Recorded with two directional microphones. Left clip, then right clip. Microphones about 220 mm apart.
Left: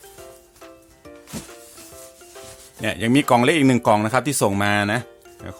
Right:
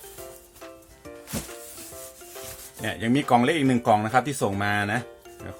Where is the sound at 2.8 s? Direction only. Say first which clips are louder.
Left 6 dB; 50° left (ahead or behind).